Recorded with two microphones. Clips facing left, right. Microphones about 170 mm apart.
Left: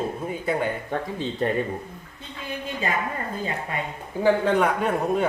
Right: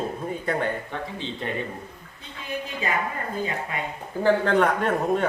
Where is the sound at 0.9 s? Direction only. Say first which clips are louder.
Left 4 dB; 45° left (ahead or behind).